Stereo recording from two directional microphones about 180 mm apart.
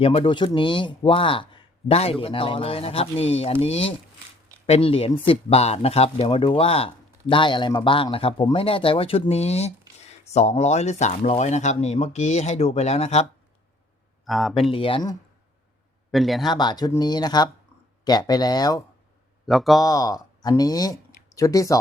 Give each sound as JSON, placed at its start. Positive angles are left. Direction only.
{"t": 0.0, "sound": "speech", "side_deg": 30}
{"t": 14.3, "sound": "a man's voice", "side_deg": 0}
{"t": 14.7, "sound": "speech", "side_deg": 30}
{"t": 16.1, "sound": "a man's voice", "side_deg": 0}
{"t": 16.5, "sound": "speech", "side_deg": 25}
{"t": 19.5, "sound": "a man's voice", "side_deg": 0}
{"t": 19.8, "sound": "speech", "side_deg": 20}